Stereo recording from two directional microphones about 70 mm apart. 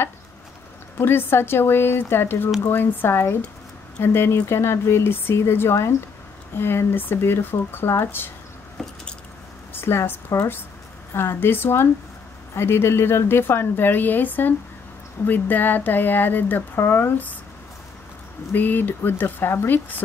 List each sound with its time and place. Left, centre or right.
0.9 s a woman's voice: left
9.7 s a woman's voice: left
18.5 s speech: left